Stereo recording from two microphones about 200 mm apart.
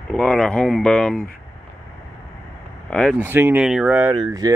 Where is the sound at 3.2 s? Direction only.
10° right (ahead or behind).